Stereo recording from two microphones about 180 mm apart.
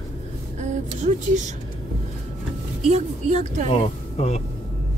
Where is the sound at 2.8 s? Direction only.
40° right (ahead or behind).